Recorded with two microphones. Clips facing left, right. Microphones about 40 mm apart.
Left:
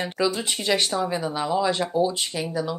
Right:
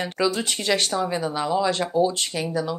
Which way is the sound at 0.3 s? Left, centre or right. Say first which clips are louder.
Right 1 dB; centre.